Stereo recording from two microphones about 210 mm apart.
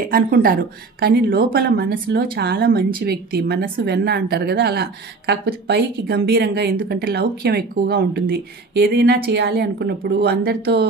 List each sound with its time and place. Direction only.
0.1 s speech: 45° right (ahead or behind)